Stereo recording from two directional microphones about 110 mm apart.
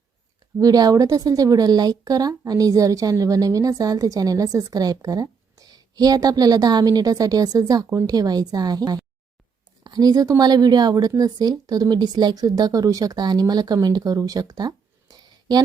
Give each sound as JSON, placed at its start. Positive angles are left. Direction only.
{"t": 0.6, "sound": "speech", "side_deg": -35}